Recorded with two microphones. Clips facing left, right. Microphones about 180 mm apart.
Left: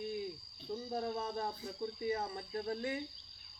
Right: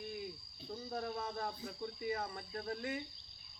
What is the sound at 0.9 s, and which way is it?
Speech, 25° left (ahead or behind).